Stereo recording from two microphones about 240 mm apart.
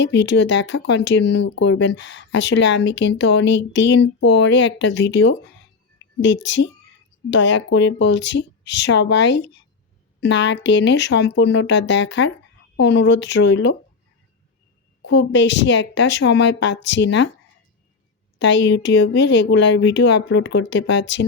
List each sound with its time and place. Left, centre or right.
0.0 s speech: left
15.0 s speech: left
18.3 s speech: left